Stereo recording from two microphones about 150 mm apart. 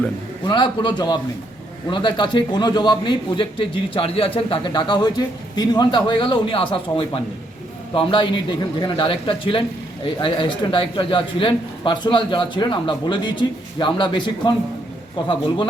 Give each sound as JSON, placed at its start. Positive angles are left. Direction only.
{"t": 0.4, "sound": "a man's voice", "side_deg": 30}